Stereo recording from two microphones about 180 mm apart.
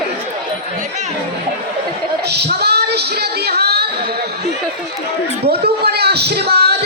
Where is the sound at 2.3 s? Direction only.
65° right (ahead or behind).